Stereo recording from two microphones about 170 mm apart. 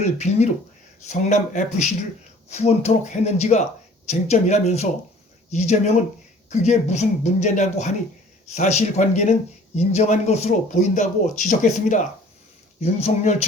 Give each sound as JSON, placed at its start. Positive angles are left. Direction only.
{"t": 0.0, "sound": "speech", "side_deg": 40}